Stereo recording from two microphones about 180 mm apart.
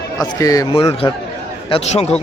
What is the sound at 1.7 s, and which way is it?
Speech, 35° left (ahead or behind).